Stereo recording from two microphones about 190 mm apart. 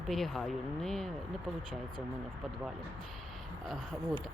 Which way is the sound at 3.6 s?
Centre (ahead or behind).